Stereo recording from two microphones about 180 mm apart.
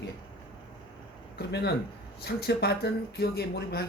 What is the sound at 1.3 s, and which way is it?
Speech, 65° left (ahead or behind).